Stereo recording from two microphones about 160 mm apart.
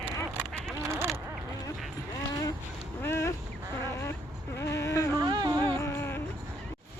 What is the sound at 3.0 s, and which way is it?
Goose, 15° left (ahead or behind).